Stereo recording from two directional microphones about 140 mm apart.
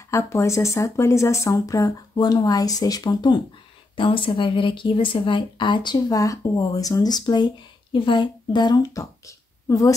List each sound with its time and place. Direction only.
0.1 s a woman's voice: 20° left (ahead or behind)